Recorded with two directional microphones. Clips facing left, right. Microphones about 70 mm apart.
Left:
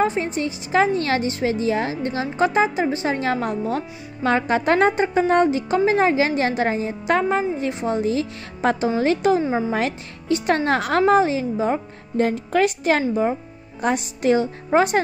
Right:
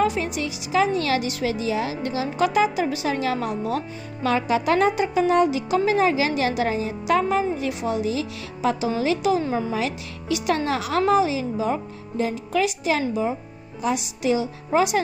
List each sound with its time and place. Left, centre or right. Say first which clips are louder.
0.0 s a woman's voice: left 2 dB; left
9.4 s speech: left 3 dB; centre
9.7 s a woman's voice: left 3 dB; left